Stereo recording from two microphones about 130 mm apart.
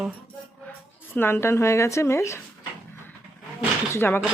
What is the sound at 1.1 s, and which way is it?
Speech, 20° left (ahead or behind).